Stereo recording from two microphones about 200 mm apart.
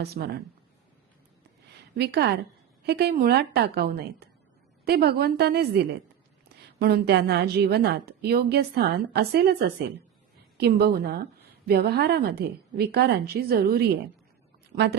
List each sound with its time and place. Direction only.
0.0 s a woman's voice: 55° right (ahead or behind)
1.7 s a woman's voice: 55° right (ahead or behind)